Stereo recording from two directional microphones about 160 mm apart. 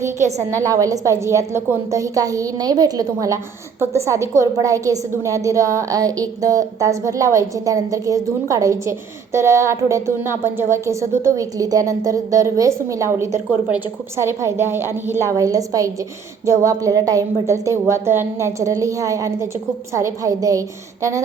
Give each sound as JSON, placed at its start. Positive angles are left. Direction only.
{"t": 0.6, "sound": "a woman's voice", "side_deg": -20}